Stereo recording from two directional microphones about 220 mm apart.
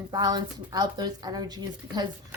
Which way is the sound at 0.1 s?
20° right (ahead or behind).